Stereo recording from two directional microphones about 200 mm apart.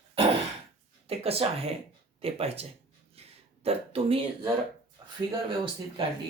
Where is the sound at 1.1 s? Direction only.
30° right (ahead or behind).